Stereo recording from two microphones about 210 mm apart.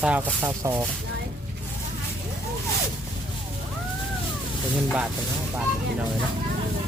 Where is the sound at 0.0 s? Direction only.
10° right (ahead or behind).